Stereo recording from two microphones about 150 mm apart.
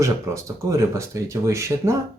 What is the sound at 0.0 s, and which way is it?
Speech, 20° right (ahead or behind).